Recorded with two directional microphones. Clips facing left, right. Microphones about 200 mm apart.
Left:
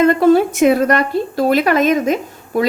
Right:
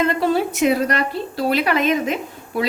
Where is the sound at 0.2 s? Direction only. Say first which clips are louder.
Left 7 dB; 50° left (ahead or behind).